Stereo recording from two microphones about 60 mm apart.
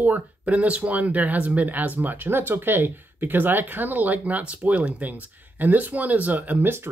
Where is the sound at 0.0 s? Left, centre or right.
Right.